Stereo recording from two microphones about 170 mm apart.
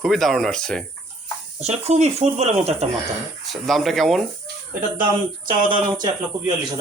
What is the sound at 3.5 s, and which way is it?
Speech, centre (ahead or behind).